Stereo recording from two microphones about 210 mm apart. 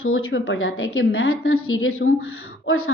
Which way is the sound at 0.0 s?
80° left.